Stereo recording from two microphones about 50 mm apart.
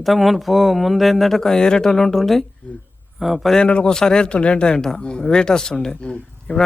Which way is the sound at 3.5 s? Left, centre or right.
Centre.